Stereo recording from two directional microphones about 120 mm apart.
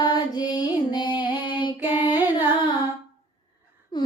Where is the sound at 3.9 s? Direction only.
35° left (ahead or behind).